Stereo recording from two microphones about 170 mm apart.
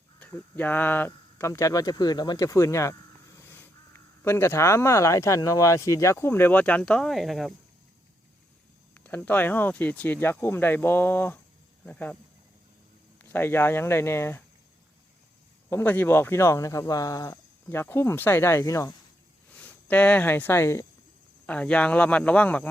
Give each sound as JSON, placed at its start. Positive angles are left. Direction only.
{"t": 0.2, "sound": "speech", "side_deg": 10}
{"t": 9.0, "sound": "speech", "side_deg": 10}
{"t": 13.2, "sound": "speech", "side_deg": 10}
{"t": 15.7, "sound": "speech", "side_deg": 10}
{"t": 19.5, "sound": "speech", "side_deg": 10}